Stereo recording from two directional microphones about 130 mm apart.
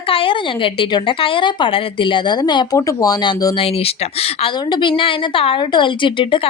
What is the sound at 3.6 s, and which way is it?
Speech, 50° left (ahead or behind).